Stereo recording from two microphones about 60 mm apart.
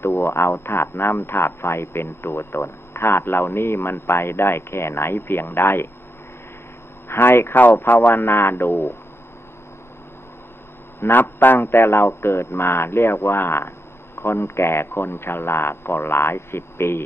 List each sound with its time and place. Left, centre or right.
0.0 s a man's voice: left
7.1 s a man's voice: left
11.0 s a man's voice: left